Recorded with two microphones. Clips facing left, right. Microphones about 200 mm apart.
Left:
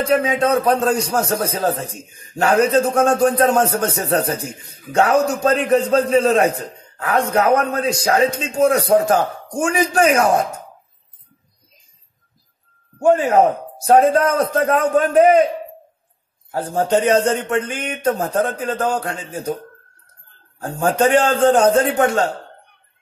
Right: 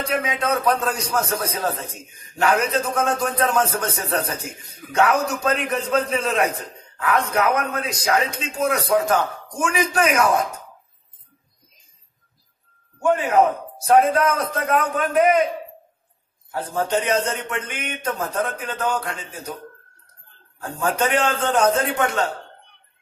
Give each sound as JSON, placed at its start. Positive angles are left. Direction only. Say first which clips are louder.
{"t": 0.1, "sound": "a man's voice", "louder": "left 7 dB", "side_deg": 30}
{"t": 13.0, "sound": "a man's voice", "louder": "left 4 dB", "side_deg": 35}
{"t": 16.5, "sound": "a man's voice", "louder": "left 5 dB", "side_deg": 30}
{"t": 20.5, "sound": "a man's voice", "louder": "left 5 dB", "side_deg": 35}